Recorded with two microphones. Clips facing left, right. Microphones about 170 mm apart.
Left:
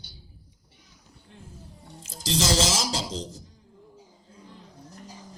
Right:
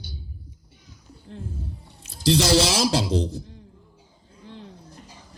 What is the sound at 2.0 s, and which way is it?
Speech, 60° right (ahead or behind).